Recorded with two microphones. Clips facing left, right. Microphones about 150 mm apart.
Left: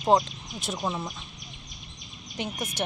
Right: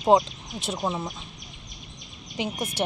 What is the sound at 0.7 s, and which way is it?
Speech, 10° right (ahead or behind).